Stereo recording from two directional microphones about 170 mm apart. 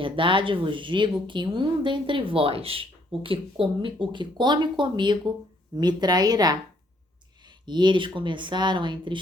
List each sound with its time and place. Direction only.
0.0 s speech: 30° right (ahead or behind)